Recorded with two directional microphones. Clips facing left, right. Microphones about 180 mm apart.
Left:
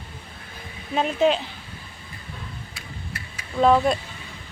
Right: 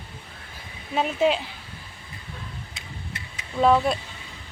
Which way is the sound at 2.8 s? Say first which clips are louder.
Left 1 dB; 20° right (ahead or behind).